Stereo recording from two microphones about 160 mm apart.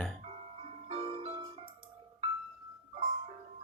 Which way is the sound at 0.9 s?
35° right (ahead or behind).